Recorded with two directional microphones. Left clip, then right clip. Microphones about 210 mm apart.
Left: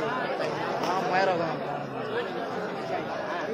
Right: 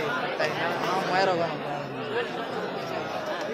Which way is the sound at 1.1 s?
50° right (ahead or behind).